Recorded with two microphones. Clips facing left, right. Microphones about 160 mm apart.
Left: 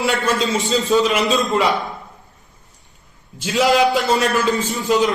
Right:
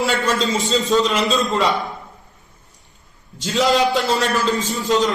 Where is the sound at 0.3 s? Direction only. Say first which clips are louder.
Left 1 dB; centre (ahead or behind).